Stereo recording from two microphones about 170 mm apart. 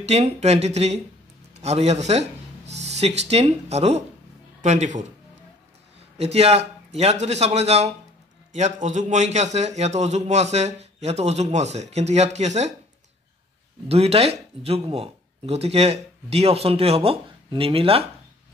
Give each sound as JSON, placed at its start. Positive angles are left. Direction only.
{"t": 0.0, "sound": "a man's voice", "side_deg": -40}
{"t": 6.1, "sound": "a man's voice", "side_deg": -40}
{"t": 13.8, "sound": "a man's voice", "side_deg": -35}